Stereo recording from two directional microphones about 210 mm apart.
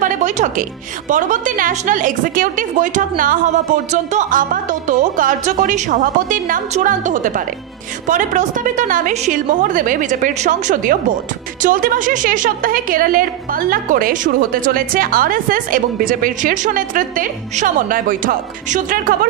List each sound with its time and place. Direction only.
0.0 s a woman's voice: 35° right (ahead or behind)